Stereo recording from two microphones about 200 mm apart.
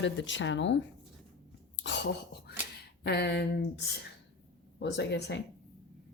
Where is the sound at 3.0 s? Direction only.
55° left (ahead or behind).